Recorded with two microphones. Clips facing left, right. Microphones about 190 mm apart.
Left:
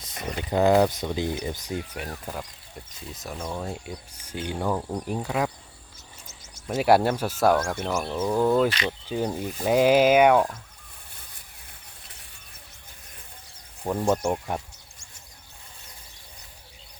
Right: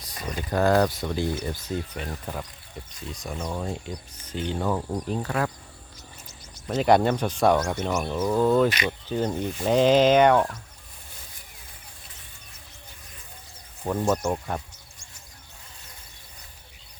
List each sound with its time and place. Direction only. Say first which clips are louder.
0.0 s speech: left 1 dB; 20° left (ahead or behind)
2.2 s speech: right 1 dB; 5° left (ahead or behind)
6.7 s speech: even; 5° left (ahead or behind)
13.8 s speech: even; 15° left (ahead or behind)